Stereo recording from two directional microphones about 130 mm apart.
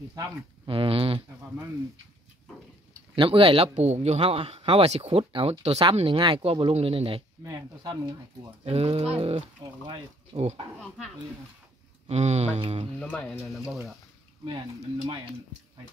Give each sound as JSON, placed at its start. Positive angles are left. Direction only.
{"t": 0.7, "sound": "a sound", "side_deg": -45}
{"t": 3.2, "sound": "speech", "side_deg": -45}
{"t": 5.9, "sound": "speech", "side_deg": -40}
{"t": 7.4, "sound": "speech", "side_deg": -30}
{"t": 8.6, "sound": "speech", "side_deg": -50}
{"t": 12.1, "sound": "a sound", "side_deg": -55}
{"t": 13.0, "sound": "speech", "side_deg": 15}
{"t": 13.7, "sound": "speech", "side_deg": 0}